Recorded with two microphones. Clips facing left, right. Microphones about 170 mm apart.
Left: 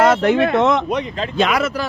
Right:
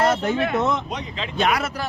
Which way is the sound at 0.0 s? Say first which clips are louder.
Left 6 dB; 90° left.